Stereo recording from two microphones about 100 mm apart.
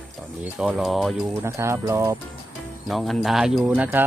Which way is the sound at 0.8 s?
Centre (ahead or behind).